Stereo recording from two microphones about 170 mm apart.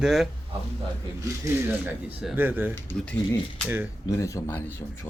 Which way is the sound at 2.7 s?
15° left (ahead or behind).